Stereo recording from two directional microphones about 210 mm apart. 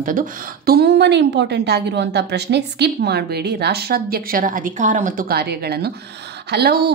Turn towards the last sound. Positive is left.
turn(degrees=-50)  # may be behind; listen again after turning